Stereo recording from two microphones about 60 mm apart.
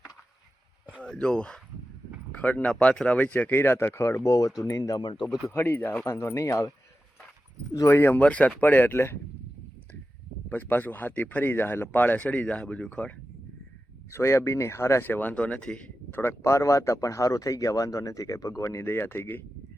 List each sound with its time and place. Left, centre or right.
1.0 s speech: centre
3.6 s speech: left
4.2 s speech: left
4.6 s speech: left
5.5 s speech: left
6.1 s speech: left
7.9 s speech: left
8.2 s speech: left
8.7 s speech: left
10.5 s speech: left
14.1 s speech: left
15.0 s speech: left
16.4 s speech: left